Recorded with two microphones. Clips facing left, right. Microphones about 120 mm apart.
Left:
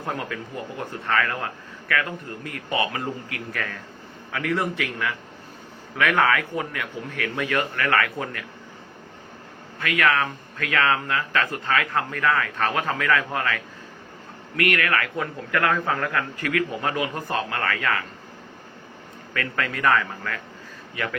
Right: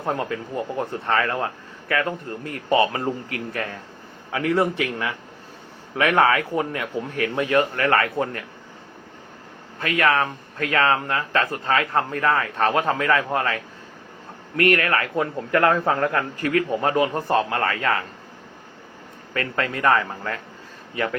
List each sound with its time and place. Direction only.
0.0 s a man's voice: 30° right (ahead or behind)
9.8 s speech: 30° right (ahead or behind)
19.3 s speech: 25° right (ahead or behind)